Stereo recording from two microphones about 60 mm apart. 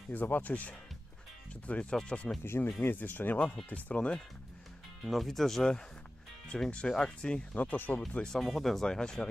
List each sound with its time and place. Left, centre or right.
0.1 s speech: left
2.4 s speech: left
5.0 s speech: centre
7.5 s speech: left
8.1 s speech: centre
8.4 s speech: centre